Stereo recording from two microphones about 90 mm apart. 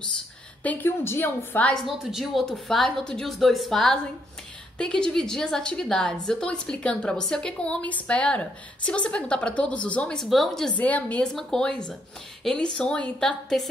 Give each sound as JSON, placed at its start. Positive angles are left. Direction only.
{"t": 0.7, "sound": "a woman's voice", "side_deg": 25}
{"t": 1.9, "sound": "a woman's voice", "side_deg": 0}
{"t": 10.8, "sound": "a woman's voice", "side_deg": 15}